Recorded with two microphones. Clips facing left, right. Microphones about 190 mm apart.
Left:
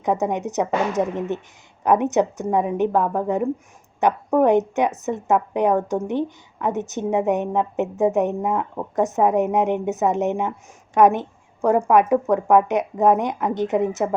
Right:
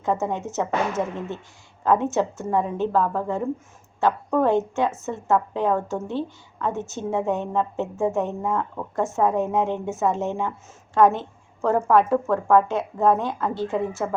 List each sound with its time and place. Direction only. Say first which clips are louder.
0.0 s a woman's voice: left 3 dB; 15° left (ahead or behind)